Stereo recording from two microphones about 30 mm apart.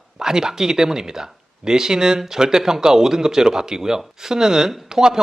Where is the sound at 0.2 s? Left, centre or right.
Centre.